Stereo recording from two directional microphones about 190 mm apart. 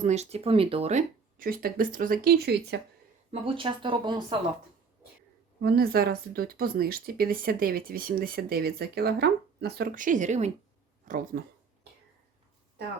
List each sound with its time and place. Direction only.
0.0 s speech: 35° right (ahead or behind); by 2.8 s 60° right (ahead or behind)
3.4 s speech: 30° right (ahead or behind)
5.5 s speech: 55° right (ahead or behind)